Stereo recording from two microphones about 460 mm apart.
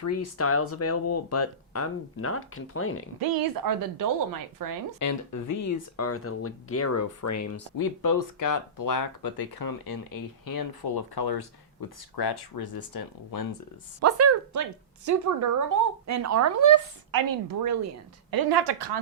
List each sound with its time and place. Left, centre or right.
0.0 s speech: left
3.2 s speech: right
4.9 s speech: left
14.0 s a woman's voice: right